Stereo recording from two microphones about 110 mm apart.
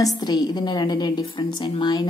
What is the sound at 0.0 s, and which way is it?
A woman's voice, 35° left (ahead or behind).